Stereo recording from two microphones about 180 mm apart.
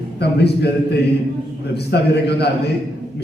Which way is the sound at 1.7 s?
65° left (ahead or behind).